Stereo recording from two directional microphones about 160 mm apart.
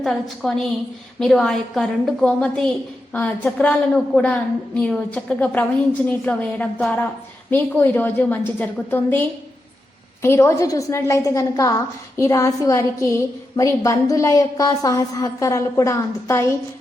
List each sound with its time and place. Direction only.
0.0 s a woman's voice: centre (ahead or behind)
10.2 s a woman's voice: 15° left (ahead or behind)